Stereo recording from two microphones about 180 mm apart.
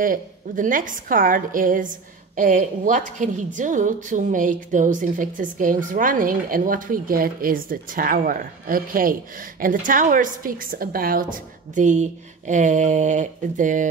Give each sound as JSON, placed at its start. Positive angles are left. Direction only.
{"t": 0.0, "sound": "a woman's voice", "side_deg": -50}